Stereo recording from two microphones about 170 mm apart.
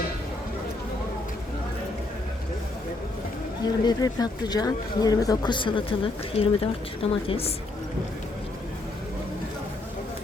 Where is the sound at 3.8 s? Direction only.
25° left (ahead or behind).